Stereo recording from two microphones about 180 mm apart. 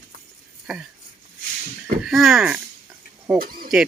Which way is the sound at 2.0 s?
Centre (ahead or behind).